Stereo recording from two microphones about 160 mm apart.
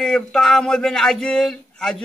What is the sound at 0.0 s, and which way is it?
Speech, 5° left (ahead or behind).